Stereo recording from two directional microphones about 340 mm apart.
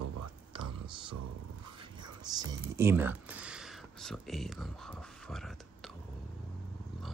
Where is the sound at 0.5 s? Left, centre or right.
Centre.